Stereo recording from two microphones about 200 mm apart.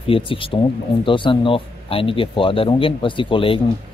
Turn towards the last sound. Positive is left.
turn(degrees=25)  # may be behind; listen again after turning